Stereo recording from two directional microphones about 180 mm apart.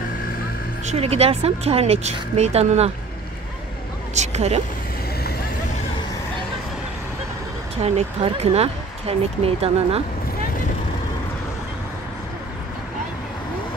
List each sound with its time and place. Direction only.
0.8 s speech: 35° right (ahead or behind)
4.1 s speech: 40° right (ahead or behind)
7.7 s speech: 35° right (ahead or behind)